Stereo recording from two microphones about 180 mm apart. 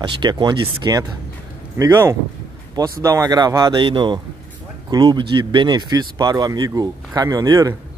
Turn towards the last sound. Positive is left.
turn(degrees=-20)  # may be behind; listen again after turning